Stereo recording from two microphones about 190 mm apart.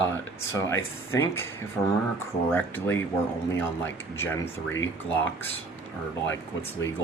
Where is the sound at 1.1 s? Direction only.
15° left (ahead or behind).